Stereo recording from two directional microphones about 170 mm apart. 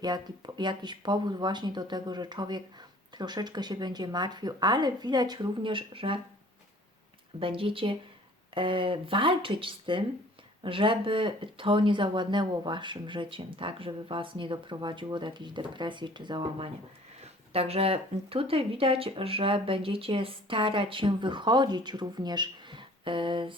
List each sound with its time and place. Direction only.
0.0 s speech: 25° right (ahead or behind)
7.3 s speech: 30° right (ahead or behind)